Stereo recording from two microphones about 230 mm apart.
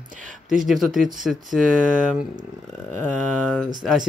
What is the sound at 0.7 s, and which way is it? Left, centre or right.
Speech, centre.